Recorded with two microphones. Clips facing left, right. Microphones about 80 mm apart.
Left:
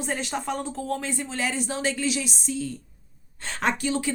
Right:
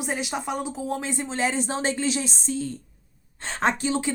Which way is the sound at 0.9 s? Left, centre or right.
Right.